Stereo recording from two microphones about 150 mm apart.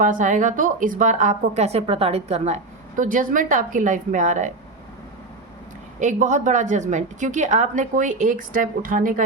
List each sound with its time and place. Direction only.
0.0 s a woman's voice: 60° right (ahead or behind)
6.0 s a woman's voice: 55° right (ahead or behind)